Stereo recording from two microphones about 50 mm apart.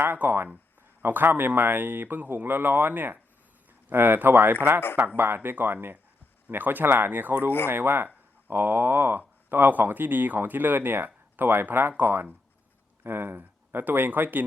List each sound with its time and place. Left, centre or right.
0.2 s speech: right